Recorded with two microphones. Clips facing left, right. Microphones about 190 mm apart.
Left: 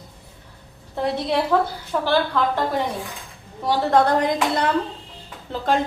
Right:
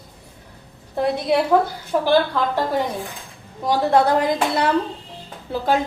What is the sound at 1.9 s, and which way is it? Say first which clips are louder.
Speech: right 3 dB; 20° right (ahead or behind).